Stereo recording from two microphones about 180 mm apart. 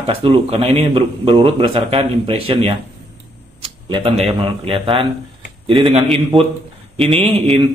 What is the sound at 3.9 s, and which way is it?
A man's voice, 30° right (ahead or behind).